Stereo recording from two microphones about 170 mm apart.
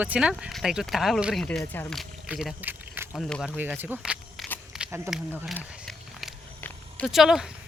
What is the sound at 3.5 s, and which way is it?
Speech, 10° right (ahead or behind).